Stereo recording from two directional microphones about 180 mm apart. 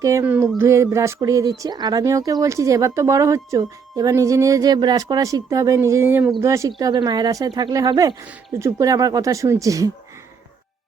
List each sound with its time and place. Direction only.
0.0 s speech: 15° right (ahead or behind)